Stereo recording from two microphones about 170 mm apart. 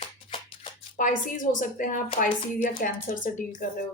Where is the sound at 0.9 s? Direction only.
50° left (ahead or behind).